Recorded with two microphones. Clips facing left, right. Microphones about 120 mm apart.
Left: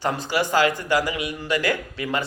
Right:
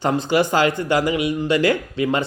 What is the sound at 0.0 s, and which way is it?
Speech, 25° right (ahead or behind).